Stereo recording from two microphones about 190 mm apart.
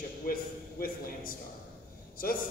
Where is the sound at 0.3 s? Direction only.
50° left (ahead or behind).